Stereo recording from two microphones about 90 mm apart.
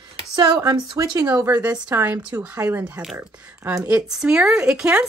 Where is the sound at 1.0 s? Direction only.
55° right (ahead or behind).